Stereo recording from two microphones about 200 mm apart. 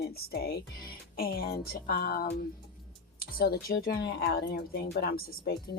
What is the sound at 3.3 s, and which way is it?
Speech, 50° left (ahead or behind).